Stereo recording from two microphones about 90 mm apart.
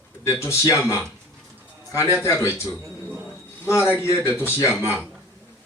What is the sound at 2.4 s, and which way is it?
Speech, 30° left (ahead or behind).